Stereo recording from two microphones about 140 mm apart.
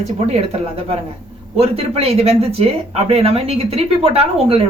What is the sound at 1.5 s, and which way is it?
Speech, 45° right (ahead or behind).